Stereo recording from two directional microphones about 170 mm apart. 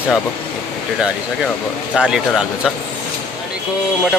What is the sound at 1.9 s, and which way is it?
Speech, 5° right (ahead or behind).